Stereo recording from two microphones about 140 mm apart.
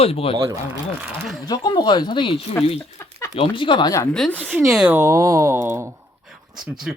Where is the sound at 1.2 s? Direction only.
5° right (ahead or behind).